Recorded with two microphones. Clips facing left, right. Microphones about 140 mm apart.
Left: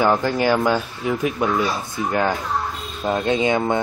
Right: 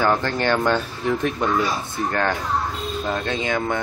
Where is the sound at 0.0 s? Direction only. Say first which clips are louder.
Left 2 dB; 10° left (ahead or behind).